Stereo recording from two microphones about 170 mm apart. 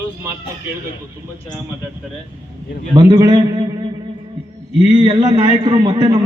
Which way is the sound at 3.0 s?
20° right (ahead or behind).